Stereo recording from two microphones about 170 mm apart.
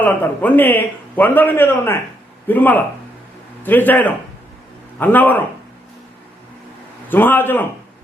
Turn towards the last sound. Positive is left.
turn(degrees=10)  # may be behind; listen again after turning